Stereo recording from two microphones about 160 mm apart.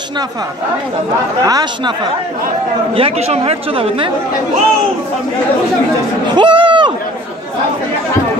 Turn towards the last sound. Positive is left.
turn(degrees=-30)  # may be behind; listen again after turning